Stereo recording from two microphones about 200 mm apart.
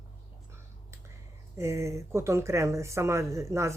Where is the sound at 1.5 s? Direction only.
15° right (ahead or behind).